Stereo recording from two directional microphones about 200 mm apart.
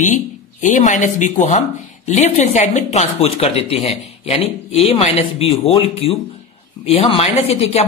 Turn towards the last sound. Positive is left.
turn(degrees=30)  # may be behind; listen again after turning